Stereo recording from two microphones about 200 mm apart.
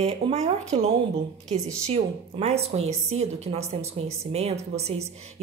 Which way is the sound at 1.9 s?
30° right (ahead or behind).